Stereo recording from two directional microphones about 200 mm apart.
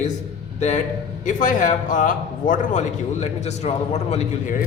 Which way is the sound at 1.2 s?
40° left (ahead or behind).